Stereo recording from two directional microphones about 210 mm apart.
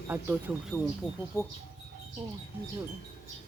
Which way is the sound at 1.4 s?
15° left (ahead or behind).